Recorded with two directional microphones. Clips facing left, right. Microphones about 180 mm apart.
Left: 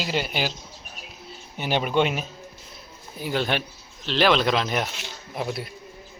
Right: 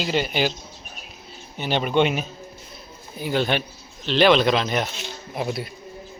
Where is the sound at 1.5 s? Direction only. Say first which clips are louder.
Right 2 dB; 10° left (ahead or behind).